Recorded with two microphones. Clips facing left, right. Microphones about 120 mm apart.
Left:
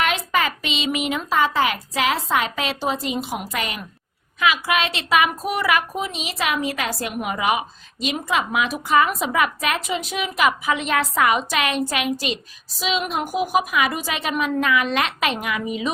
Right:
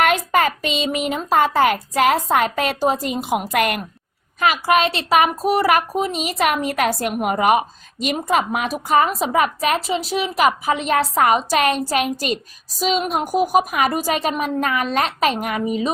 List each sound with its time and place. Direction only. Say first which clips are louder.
0.0 s speech: right 5 dB; 50° right (ahead or behind)
4.4 s a woman's voice: right 4 dB; 40° right (ahead or behind)